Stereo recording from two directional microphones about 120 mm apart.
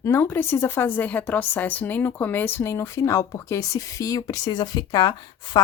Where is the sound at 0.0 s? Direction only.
20° left (ahead or behind).